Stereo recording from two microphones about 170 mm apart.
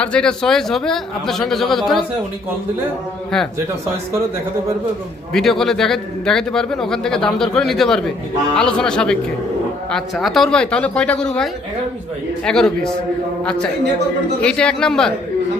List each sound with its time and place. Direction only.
0.0 s a man's voice: 5° left (ahead or behind)
3.3 s a man's voice: centre (ahead or behind)
5.3 s a man's voice: centre (ahead or behind)
12.5 s a man's voice: 5° left (ahead or behind)